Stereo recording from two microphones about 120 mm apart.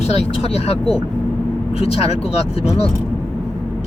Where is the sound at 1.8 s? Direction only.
55° left (ahead or behind).